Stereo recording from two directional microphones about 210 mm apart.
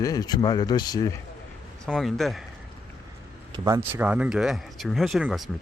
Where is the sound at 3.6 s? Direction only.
10° right (ahead or behind).